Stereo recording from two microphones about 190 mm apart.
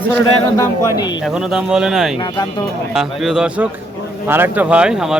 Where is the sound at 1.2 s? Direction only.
5° right (ahead or behind).